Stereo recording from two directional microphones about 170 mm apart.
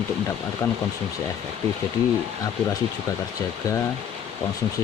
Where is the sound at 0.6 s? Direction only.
15° left (ahead or behind).